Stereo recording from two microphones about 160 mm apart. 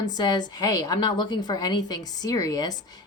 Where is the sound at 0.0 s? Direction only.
25° left (ahead or behind).